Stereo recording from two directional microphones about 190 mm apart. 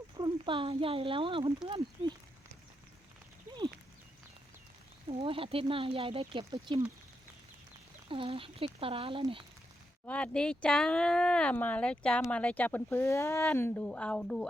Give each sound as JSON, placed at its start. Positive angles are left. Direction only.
{"t": 0.2, "sound": "speech", "side_deg": -25}
{"t": 5.0, "sound": "speech", "side_deg": -30}
{"t": 8.0, "sound": "speech", "side_deg": -30}
{"t": 10.1, "sound": "speech", "side_deg": 5}